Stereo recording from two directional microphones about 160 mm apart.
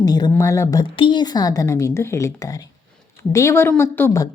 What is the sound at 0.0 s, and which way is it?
Speech, 25° left (ahead or behind).